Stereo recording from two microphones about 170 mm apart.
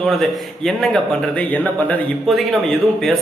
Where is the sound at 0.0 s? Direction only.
Centre (ahead or behind).